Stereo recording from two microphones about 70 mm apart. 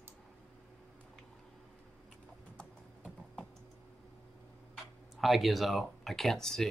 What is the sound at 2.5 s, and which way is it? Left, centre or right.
Typing, centre.